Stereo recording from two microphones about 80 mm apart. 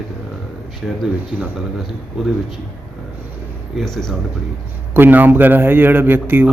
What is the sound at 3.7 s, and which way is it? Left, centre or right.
Speech, centre.